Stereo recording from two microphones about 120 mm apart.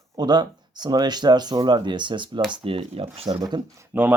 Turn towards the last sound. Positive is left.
turn(degrees=-15)  # may be behind; listen again after turning